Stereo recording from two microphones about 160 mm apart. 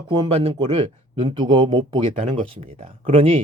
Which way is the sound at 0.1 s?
35° right (ahead or behind).